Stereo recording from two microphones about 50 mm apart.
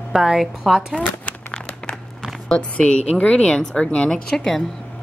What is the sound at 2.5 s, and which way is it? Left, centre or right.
Speech, left.